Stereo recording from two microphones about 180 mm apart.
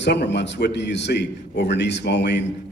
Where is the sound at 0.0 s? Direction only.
70° left (ahead or behind).